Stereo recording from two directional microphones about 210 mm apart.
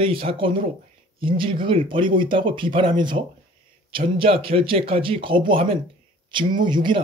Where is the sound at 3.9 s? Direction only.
25° right (ahead or behind).